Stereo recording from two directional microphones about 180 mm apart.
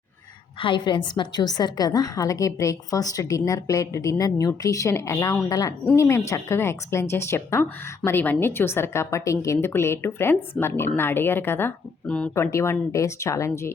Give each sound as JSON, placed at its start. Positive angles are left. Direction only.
{"t": 0.6, "sound": "a woman's voice", "side_deg": 25}